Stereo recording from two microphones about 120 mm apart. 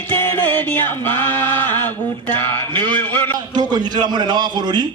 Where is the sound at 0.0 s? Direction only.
15° left (ahead or behind).